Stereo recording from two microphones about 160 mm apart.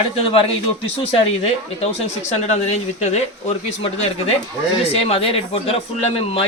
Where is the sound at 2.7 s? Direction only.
45° left (ahead or behind).